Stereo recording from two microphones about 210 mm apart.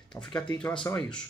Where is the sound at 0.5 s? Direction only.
5° left (ahead or behind).